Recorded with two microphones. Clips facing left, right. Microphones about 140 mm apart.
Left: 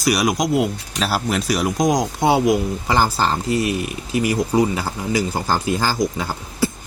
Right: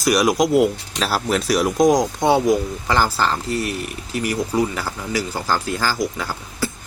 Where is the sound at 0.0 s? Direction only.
Centre (ahead or behind).